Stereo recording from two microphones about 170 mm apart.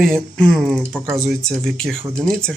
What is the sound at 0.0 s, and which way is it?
Speech, 5° left (ahead or behind).